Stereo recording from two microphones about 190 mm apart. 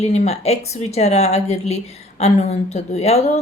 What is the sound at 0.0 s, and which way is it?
Speech, 35° left (ahead or behind).